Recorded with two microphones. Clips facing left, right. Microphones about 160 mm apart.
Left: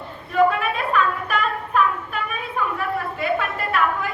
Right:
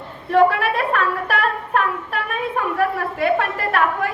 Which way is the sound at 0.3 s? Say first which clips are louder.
Right 3 dB; 70° right (ahead or behind).